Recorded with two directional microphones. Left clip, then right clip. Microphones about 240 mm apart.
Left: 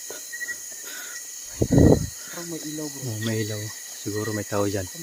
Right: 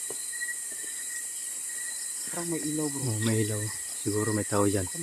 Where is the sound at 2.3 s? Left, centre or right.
Right.